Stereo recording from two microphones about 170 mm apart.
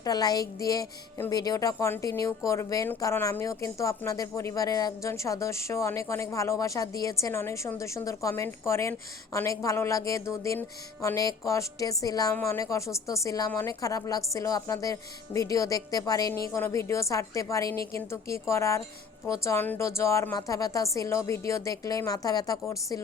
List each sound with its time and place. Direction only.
0.0 s speech: 20° left (ahead or behind)